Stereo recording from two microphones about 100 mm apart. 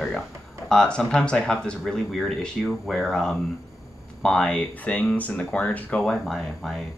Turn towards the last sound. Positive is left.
turn(degrees=5)  # may be behind; listen again after turning